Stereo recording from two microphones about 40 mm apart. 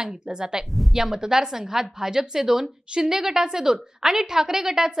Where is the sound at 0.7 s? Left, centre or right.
Centre.